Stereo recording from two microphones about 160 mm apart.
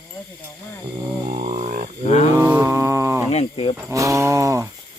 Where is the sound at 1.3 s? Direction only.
40° right (ahead or behind).